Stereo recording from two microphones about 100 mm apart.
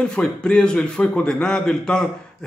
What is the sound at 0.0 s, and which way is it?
A man's voice, 10° left (ahead or behind).